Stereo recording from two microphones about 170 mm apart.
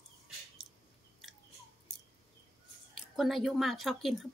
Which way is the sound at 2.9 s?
Centre (ahead or behind).